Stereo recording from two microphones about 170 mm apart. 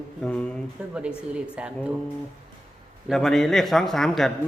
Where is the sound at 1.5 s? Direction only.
5° right (ahead or behind).